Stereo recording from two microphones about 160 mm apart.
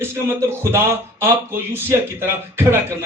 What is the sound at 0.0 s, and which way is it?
A man's voice, 15° right (ahead or behind).